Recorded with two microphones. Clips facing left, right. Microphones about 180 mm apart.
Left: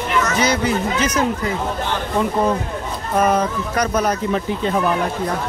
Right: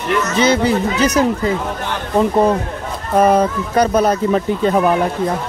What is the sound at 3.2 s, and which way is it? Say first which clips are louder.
Speech: right 5 dB; 30° right (ahead or behind).